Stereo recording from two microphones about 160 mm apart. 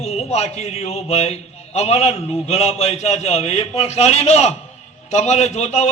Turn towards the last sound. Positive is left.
turn(degrees=45)  # may be behind; listen again after turning